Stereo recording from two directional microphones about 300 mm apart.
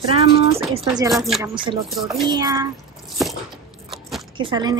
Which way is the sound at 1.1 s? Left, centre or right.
Centre.